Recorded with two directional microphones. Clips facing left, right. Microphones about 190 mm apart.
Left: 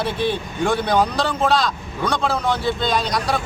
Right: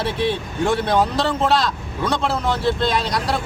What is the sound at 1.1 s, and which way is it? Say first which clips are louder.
Speech: right 1 dB; 25° right (ahead or behind).